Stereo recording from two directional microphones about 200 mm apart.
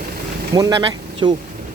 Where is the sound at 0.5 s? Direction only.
20° right (ahead or behind).